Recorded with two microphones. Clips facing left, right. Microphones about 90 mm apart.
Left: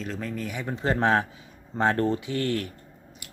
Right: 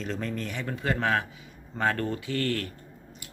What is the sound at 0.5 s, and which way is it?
Speech, 20° left (ahead or behind).